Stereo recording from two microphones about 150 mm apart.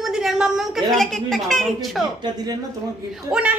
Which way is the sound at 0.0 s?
Centre (ahead or behind).